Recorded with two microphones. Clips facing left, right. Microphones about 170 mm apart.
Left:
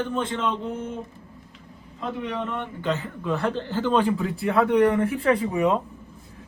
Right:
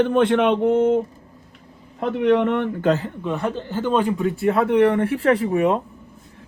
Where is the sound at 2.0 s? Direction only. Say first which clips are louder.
Right 11 dB; 70° right (ahead or behind).